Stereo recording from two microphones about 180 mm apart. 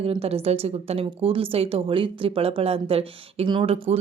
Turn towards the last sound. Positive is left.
turn(degrees=-30)  # may be behind; listen again after turning